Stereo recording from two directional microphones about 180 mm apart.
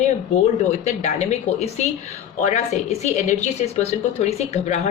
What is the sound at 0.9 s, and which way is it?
Speech, 40° left (ahead or behind).